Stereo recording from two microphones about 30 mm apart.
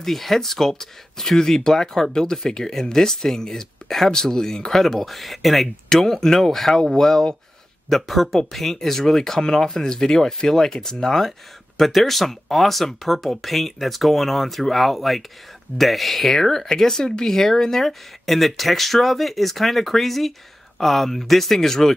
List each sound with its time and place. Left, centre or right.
0.0 s speech: centre
5.9 s speech: centre